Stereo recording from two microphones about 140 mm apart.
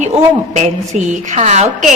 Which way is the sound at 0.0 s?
55° right (ahead or behind).